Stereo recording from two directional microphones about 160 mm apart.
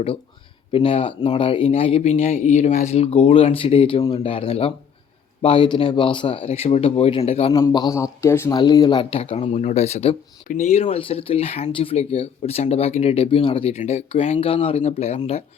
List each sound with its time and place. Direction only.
0.7 s speech: 35° left (ahead or behind)
7.7 s speech: 25° left (ahead or behind)
8.5 s speech: 25° left (ahead or behind); by 15.2 s 40° left (ahead or behind)